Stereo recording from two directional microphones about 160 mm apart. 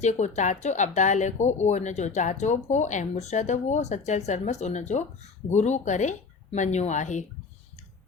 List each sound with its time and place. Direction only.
0.0 s speech: 45° left (ahead or behind)